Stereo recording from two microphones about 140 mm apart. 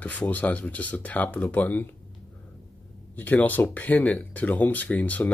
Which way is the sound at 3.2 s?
10° left (ahead or behind).